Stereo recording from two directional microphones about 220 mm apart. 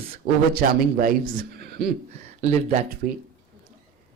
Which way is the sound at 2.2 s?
30° right (ahead or behind).